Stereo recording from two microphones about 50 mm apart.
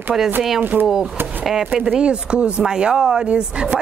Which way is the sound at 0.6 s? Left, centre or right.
Right.